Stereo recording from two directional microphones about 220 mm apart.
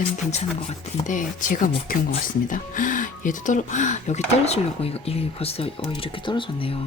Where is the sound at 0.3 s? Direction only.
30° left (ahead or behind).